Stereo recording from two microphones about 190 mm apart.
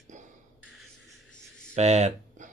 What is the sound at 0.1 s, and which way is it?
Beatboxing, 40° right (ahead or behind).